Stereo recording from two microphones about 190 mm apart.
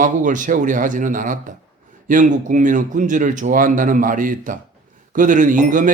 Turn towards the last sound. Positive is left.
turn(degrees=-45)  # may be behind; listen again after turning